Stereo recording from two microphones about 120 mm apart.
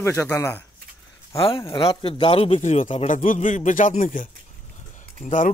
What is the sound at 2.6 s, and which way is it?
Speech, 75° left (ahead or behind).